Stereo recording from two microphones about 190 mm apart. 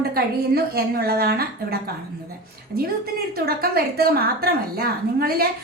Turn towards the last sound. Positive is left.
turn(degrees=-55)  # may be behind; listen again after turning